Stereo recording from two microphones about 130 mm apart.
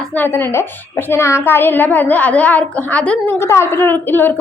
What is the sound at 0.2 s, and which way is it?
A child's voice, 15° left (ahead or behind).